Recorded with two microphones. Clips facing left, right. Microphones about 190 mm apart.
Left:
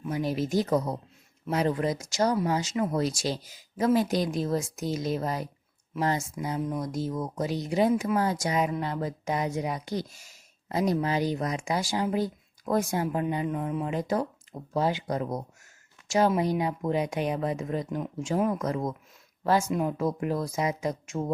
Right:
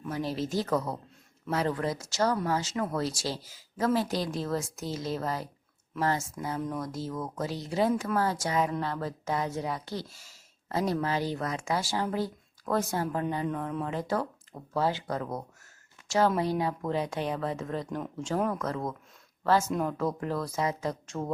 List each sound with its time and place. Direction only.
0.1 s speech: 15° left (ahead or behind)